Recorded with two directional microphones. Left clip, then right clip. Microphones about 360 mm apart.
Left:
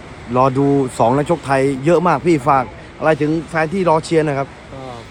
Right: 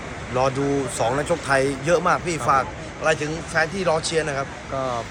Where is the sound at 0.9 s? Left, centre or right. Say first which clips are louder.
Left 7 dB; left.